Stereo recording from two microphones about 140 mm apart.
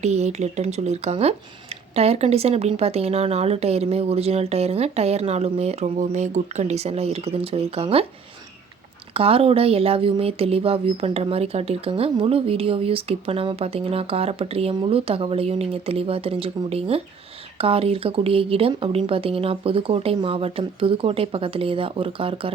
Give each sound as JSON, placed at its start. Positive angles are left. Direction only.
{"t": 0.0, "sound": "speech", "side_deg": -55}
{"t": 9.1, "sound": "speech", "side_deg": -40}